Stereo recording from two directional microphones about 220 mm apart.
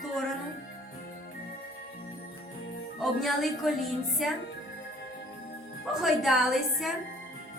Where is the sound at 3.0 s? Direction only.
Centre (ahead or behind).